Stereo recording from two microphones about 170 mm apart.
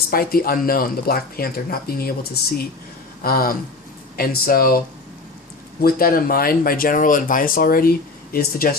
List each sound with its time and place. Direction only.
0.1 s speech: 60° left (ahead or behind)
5.8 s speech: 60° left (ahead or behind)